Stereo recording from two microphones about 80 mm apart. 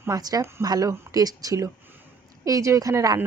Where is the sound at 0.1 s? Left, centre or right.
Right.